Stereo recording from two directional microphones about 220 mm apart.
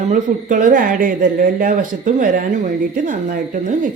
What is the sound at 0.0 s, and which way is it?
Speech, 35° right (ahead or behind).